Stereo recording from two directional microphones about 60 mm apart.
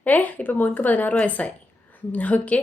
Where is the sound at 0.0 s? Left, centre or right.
Left.